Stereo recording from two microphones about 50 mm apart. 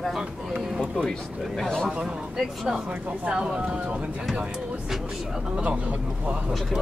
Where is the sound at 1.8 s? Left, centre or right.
Centre.